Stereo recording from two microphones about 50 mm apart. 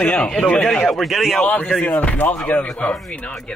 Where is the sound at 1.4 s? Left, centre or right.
Left.